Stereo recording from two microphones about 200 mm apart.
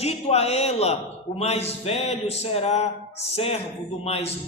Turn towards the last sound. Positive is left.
turn(degrees=30)  # may be behind; listen again after turning